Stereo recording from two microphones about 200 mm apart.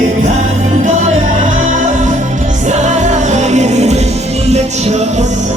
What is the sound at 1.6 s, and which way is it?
Music, 35° right (ahead or behind).